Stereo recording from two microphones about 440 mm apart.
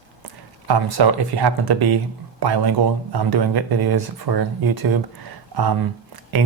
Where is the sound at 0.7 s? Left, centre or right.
Right.